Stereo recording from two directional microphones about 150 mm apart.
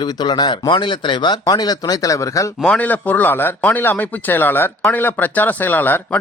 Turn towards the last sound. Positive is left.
turn(degrees=10)  # may be behind; listen again after turning